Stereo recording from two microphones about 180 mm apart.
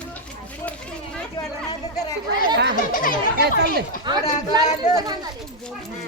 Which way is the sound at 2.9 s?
50° left (ahead or behind).